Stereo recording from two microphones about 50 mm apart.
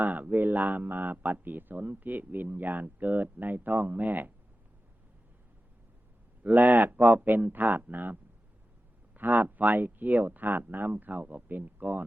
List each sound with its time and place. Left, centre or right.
0.0 s speech: right
6.4 s speech: right
9.1 s speech: right